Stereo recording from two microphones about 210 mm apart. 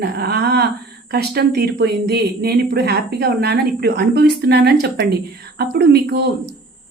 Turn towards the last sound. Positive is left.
turn(degrees=-50)  # may be behind; listen again after turning